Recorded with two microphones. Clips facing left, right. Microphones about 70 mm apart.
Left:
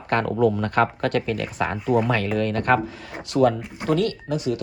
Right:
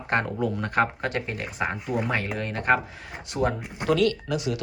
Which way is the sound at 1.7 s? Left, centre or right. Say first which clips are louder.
Left 7 dB; centre.